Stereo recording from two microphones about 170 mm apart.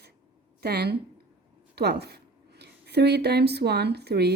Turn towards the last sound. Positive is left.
turn(degrees=-75)  # may be behind; listen again after turning